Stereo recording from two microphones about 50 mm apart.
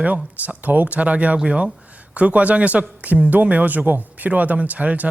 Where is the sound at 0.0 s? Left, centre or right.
Right.